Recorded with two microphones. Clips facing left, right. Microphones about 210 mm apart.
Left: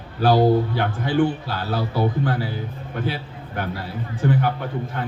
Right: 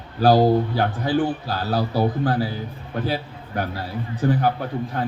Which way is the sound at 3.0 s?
40° right (ahead or behind).